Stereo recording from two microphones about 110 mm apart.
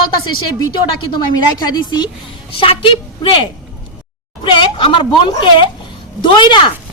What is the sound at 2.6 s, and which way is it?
Speech, 55° left (ahead or behind).